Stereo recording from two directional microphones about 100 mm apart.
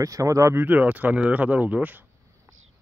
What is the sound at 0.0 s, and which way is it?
Speech, 35° right (ahead or behind).